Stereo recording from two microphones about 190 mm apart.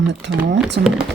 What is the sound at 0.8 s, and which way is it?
Speech, 55° right (ahead or behind).